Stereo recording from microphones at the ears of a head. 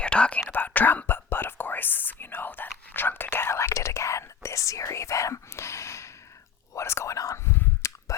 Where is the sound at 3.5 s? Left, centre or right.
Left.